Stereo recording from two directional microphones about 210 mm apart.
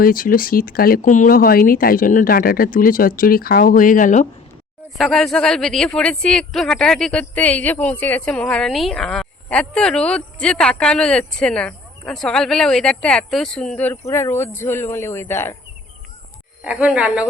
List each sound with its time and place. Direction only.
0.0 s speech: 40° left (ahead or behind)
4.9 s speech: centre (ahead or behind)
16.6 s speech: 5° right (ahead or behind)